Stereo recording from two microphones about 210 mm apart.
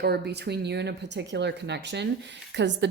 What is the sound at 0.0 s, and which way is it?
Speech, 50° right (ahead or behind).